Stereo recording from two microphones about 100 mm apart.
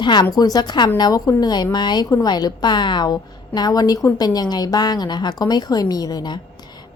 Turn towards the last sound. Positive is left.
turn(degrees=45)  # may be behind; listen again after turning